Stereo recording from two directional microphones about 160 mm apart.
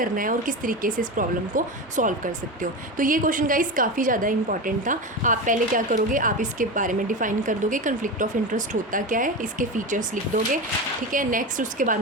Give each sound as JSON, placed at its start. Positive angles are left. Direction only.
{"t": 0.0, "sound": "speech", "side_deg": -60}